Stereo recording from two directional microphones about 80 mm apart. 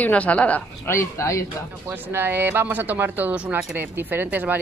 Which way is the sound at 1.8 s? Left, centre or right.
Right.